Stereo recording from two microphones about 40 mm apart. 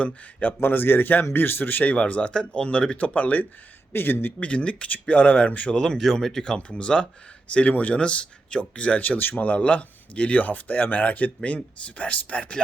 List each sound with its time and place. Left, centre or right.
0.6 s speech: left
1.8 s speech: left
3.2 s speech: left
3.9 s speech: left
4.4 s speech: left
5.7 s speech: centre
6.0 s speech: centre
6.6 s speech: left
7.7 s speech: left
7.9 s speech: left
9.0 s speech: left
9.4 s speech: left